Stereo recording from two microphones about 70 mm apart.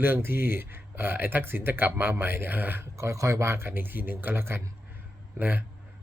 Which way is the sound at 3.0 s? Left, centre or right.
Right.